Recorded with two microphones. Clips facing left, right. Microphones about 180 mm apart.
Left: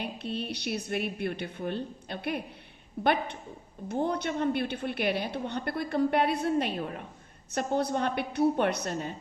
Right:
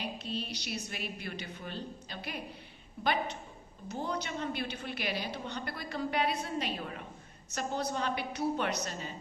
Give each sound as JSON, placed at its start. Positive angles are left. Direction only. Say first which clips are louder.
{"t": 0.0, "sound": "a woman's voice", "louder": "left 4 dB", "side_deg": 60}
{"t": 3.8, "sound": "a woman's voice", "louder": "left 7 dB", "side_deg": 60}